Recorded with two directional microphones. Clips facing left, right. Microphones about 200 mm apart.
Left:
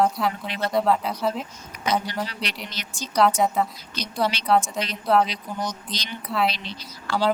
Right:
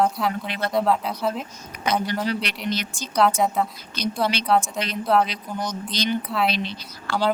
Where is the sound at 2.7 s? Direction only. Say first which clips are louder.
Right 5 dB; 55° right (ahead or behind).